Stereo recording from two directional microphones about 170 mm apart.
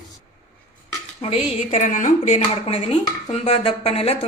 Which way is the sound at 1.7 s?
50° left (ahead or behind).